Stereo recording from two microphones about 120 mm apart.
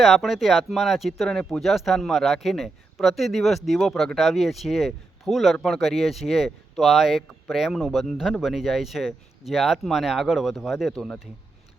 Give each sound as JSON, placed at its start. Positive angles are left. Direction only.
{"t": 0.0, "sound": "speech", "side_deg": 0}